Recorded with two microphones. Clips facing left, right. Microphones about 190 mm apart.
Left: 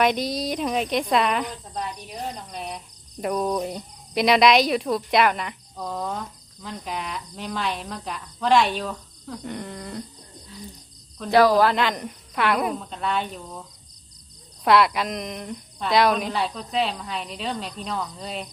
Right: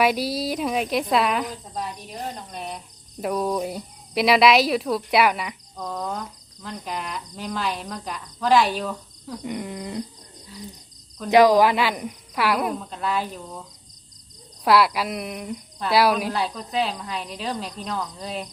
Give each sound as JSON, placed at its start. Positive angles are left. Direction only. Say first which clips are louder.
{"t": 0.0, "sound": "speech", "louder": "right 1 dB", "side_deg": -5}
{"t": 9.5, "sound": "a sound", "louder": "right 4 dB", "side_deg": -15}
{"t": 11.3, "sound": "speech", "louder": "right 2 dB", "side_deg": -15}